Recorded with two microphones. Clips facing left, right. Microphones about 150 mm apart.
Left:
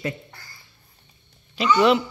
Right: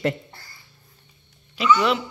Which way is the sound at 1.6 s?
35° left (ahead or behind).